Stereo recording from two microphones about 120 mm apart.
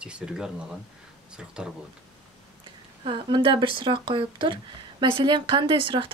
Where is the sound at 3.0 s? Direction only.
45° right (ahead or behind).